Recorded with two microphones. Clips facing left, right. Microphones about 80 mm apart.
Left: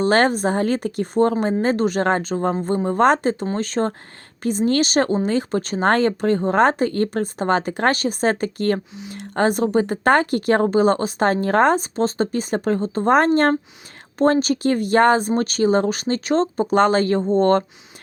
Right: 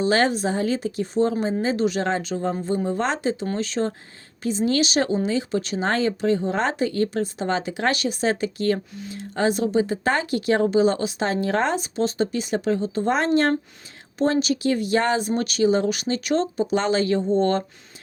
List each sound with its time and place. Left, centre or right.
0.0 s speech: left